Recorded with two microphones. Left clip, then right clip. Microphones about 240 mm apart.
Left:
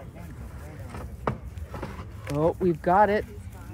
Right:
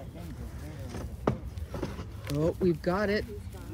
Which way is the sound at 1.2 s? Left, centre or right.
Left.